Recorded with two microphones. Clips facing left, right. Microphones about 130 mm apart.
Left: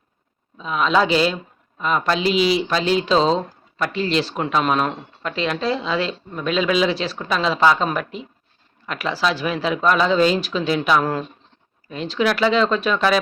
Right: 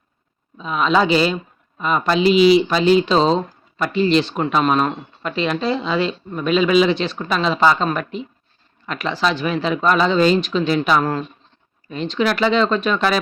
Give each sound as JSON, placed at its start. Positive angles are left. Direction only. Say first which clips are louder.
{"t": 0.5, "sound": "speech", "louder": "right 1 dB", "side_deg": 0}